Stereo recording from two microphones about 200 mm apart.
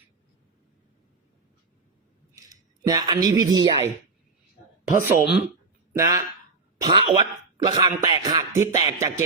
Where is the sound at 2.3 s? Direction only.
20° right (ahead or behind).